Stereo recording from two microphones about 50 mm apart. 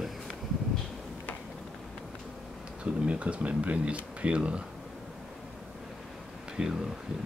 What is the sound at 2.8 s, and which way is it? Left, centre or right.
Speech, right.